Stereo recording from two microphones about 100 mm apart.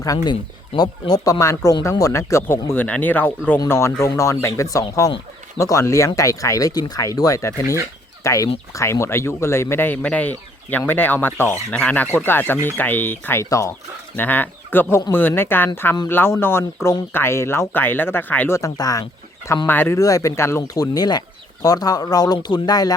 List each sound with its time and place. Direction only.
0.0 s speech: 35° left (ahead or behind)
14.2 s speech: 15° left (ahead or behind)
18.5 s speech: 35° left (ahead or behind)
19.6 s speech: 20° left (ahead or behind)
20.0 s speech: 35° left (ahead or behind)
20.7 s speech: 40° left (ahead or behind)